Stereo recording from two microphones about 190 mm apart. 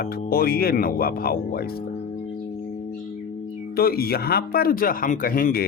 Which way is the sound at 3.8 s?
55° left (ahead or behind).